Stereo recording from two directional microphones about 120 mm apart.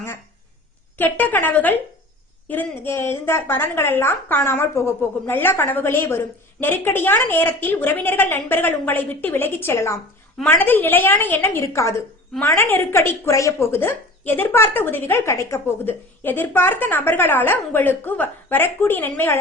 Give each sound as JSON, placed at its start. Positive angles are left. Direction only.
{"t": 0.9, "sound": "a woman's voice", "side_deg": 15}